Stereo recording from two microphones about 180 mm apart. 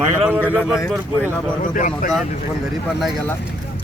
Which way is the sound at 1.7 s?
45° left (ahead or behind).